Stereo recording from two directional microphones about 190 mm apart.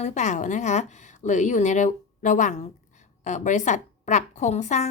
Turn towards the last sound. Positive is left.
turn(degrees=35)  # may be behind; listen again after turning